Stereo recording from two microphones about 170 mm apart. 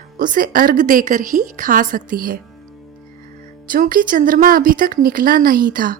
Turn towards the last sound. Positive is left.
turn(degrees=-55)  # may be behind; listen again after turning